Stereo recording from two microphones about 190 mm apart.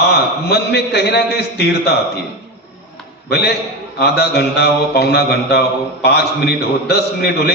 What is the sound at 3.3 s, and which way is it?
Mantra, 60° left (ahead or behind).